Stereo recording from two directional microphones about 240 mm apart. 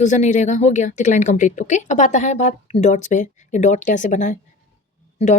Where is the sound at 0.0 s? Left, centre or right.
Left.